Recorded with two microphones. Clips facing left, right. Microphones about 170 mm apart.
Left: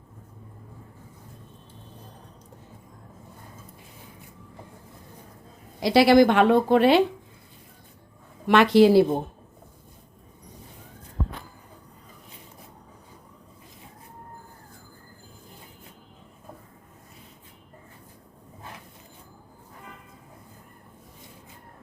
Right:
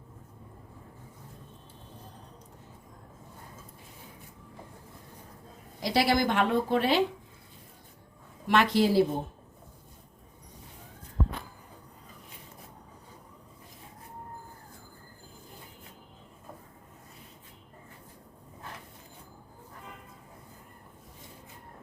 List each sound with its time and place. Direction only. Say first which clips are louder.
5.8 s a woman's voice: left 10 dB; 70° left (ahead or behind)
8.4 s a woman's voice: left 8 dB; 75° left (ahead or behind)